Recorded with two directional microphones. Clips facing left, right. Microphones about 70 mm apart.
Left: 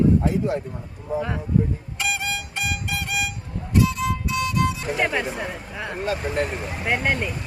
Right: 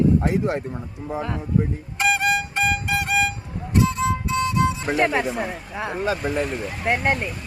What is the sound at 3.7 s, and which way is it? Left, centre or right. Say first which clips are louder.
Music: right 1 dB; right.